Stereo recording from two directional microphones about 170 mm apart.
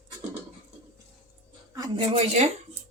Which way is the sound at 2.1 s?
40° right (ahead or behind).